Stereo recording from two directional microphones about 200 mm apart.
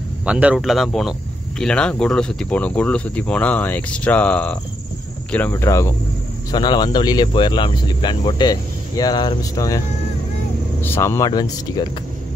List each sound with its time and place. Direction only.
0.2 s speech: 5° right (ahead or behind); by 9.8 s 15° left (ahead or behind)
10.8 s speech: 15° left (ahead or behind)